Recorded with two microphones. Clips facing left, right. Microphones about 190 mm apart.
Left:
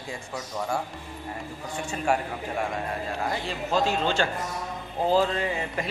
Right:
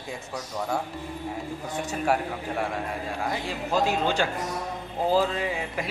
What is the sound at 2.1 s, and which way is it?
Speech, 15° left (ahead or behind).